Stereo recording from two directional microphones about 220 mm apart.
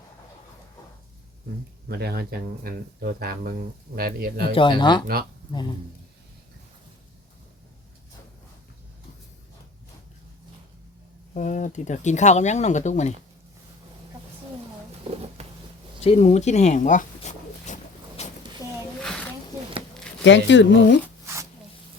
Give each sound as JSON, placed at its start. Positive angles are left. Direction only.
{"t": 1.9, "sound": "speech", "side_deg": -45}
{"t": 4.5, "sound": "speech", "side_deg": 20}
{"t": 11.3, "sound": "speech", "side_deg": 35}
{"t": 15.4, "sound": "a sound", "side_deg": -30}
{"t": 16.0, "sound": "a sound", "side_deg": 30}
{"t": 20.2, "sound": "speech", "side_deg": 55}